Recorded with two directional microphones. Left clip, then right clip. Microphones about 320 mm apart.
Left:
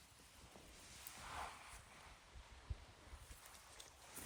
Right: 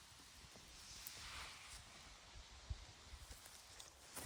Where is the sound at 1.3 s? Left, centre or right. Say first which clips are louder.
Left 6 dB; centre.